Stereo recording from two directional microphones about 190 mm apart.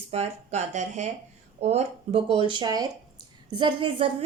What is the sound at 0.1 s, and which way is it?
A woman's voice, 35° right (ahead or behind).